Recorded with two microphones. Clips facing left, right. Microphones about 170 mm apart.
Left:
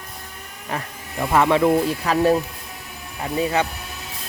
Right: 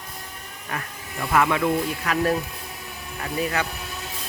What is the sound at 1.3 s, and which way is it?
Speech, 30° left (ahead or behind).